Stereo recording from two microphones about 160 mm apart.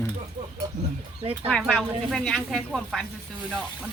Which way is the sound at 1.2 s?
40° right (ahead or behind).